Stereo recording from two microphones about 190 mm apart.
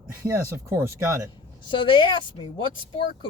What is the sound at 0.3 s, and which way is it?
Speech, 15° right (ahead or behind).